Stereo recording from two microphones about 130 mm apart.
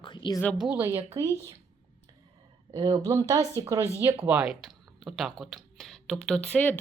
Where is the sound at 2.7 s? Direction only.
30° right (ahead or behind).